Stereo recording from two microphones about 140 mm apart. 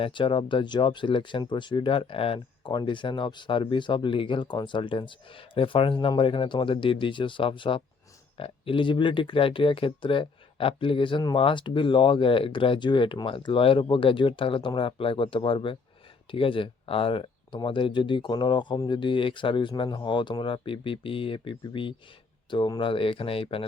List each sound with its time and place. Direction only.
0.0 s speech: 35° left (ahead or behind)